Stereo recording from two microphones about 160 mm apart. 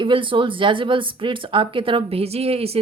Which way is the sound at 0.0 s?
30° right (ahead or behind).